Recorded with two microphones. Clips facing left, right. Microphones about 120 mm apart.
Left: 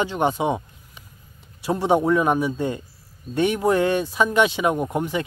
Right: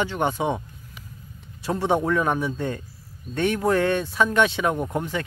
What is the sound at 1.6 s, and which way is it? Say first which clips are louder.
Speech: left 3 dB; 15° left (ahead or behind).